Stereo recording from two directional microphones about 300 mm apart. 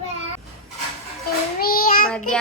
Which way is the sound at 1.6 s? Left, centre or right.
Left.